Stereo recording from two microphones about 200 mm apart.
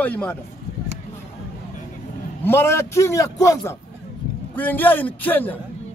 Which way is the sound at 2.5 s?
10° left (ahead or behind).